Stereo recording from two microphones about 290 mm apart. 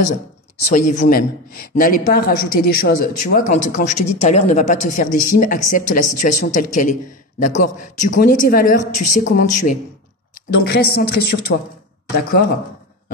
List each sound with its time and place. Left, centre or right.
0.7 s speech: left